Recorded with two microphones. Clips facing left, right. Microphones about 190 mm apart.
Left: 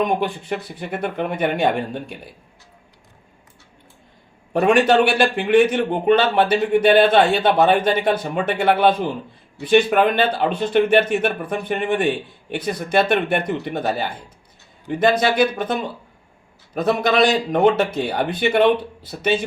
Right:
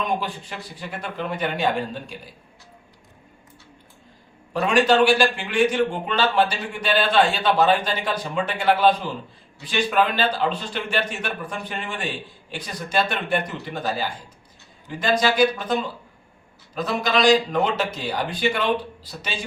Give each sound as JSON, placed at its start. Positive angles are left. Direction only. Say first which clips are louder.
{"t": 0.0, "sound": "speech", "louder": "left 6 dB", "side_deg": 55}
{"t": 4.5, "sound": "speech", "louder": "left 3 dB", "side_deg": 60}